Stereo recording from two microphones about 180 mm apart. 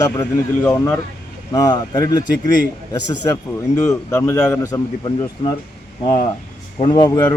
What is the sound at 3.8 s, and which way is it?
Speech, 15° left (ahead or behind).